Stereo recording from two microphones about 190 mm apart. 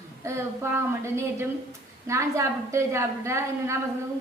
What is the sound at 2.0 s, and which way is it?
A woman's voice, 15° right (ahead or behind).